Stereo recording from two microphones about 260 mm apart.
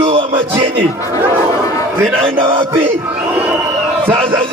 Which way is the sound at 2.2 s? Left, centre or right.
Right.